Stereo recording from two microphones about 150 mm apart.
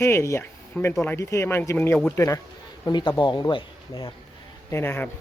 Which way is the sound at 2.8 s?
30° left (ahead or behind).